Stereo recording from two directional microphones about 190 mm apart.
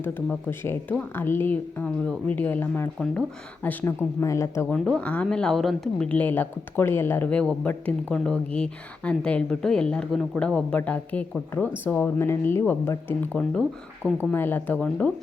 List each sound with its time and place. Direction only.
0.0 s speech: 10° left (ahead or behind)
13.6 s speech: 10° right (ahead or behind)
14.3 s speech: 10° left (ahead or behind)